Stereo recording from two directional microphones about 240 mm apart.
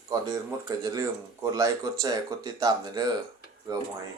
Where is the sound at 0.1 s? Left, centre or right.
Centre.